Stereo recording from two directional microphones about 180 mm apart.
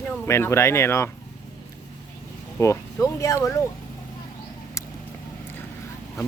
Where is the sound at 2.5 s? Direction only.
15° left (ahead or behind).